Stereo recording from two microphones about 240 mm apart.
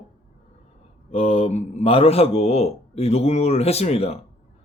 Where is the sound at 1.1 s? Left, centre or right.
Left.